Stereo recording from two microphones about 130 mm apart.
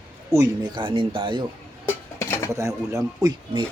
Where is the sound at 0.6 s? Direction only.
35° right (ahead or behind).